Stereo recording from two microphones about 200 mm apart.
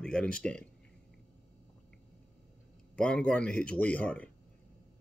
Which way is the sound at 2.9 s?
5° left (ahead or behind).